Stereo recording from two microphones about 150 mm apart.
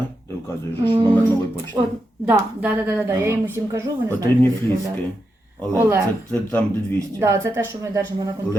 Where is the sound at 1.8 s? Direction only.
20° right (ahead or behind).